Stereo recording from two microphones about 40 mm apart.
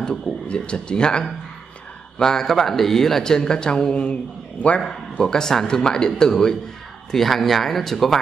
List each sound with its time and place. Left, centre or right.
0.5 s a man's voice: left; by 3.3 s centre
3.3 s a man's voice: centre
5.1 s a man's voice: centre
7.1 s speech: centre